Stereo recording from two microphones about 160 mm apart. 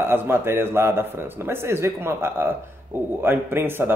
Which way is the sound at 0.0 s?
15° right (ahead or behind).